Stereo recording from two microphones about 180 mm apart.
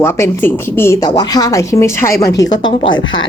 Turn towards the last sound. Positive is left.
turn(degrees=25)  # may be behind; listen again after turning